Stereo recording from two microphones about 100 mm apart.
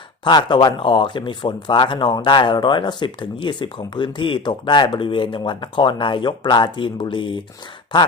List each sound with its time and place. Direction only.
0.3 s speech: 50° left (ahead or behind)